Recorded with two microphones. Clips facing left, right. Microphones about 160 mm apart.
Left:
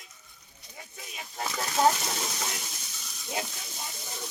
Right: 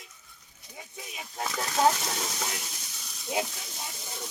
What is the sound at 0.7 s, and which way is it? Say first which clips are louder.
Speech: right 2 dB; 5° right (ahead or behind).